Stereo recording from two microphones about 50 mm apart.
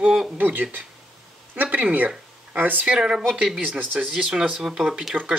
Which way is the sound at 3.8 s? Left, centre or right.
Right.